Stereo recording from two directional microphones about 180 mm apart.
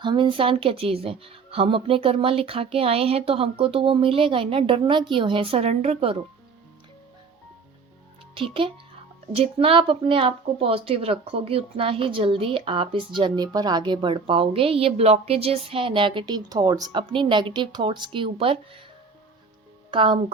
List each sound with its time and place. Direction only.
0.0 s speech: 25° right (ahead or behind)
8.4 s speech: 30° right (ahead or behind)
19.9 s speech: 30° right (ahead or behind)